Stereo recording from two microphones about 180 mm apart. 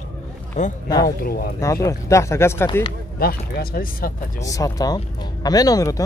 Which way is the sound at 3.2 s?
55° left (ahead or behind).